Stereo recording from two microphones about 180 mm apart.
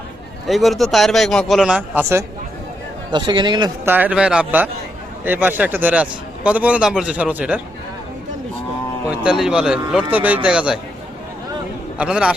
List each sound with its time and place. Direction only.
0.4 s a man's voice: centre (ahead or behind)
3.1 s speech: 25° right (ahead or behind)
3.8 s a man's voice: 10° right (ahead or behind)
9.0 s a man's voice: 5° right (ahead or behind)
11.9 s a man's voice: 5° right (ahead or behind)